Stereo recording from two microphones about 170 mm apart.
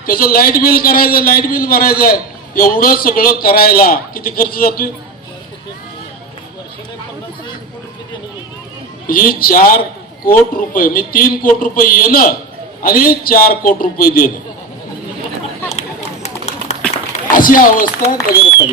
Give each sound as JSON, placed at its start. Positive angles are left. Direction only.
{"t": 0.0, "sound": "a man's voice", "side_deg": 60}
{"t": 9.0, "sound": "a man's voice", "side_deg": 55}
{"t": 16.7, "sound": "run", "side_deg": 40}
{"t": 17.3, "sound": "a man's voice", "side_deg": 55}